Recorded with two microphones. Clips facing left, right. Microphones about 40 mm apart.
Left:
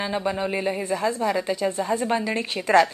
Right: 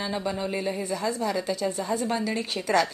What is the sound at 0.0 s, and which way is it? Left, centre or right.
A woman's voice, left.